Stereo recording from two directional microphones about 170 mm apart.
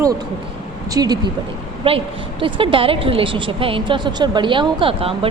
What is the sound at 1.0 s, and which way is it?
Speech, 25° right (ahead or behind).